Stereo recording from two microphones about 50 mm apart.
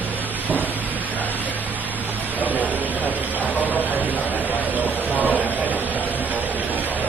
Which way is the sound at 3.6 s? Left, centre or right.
Right.